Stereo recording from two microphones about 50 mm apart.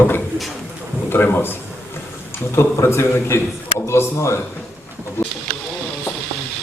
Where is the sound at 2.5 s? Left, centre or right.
Left.